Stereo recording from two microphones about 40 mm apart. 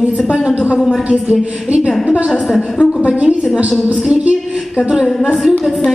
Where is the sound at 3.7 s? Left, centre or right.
Centre.